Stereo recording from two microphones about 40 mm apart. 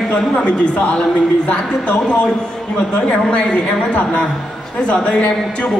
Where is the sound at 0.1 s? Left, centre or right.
Left.